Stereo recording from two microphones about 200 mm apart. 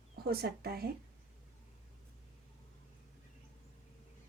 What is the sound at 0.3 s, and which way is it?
Speech, 50° right (ahead or behind).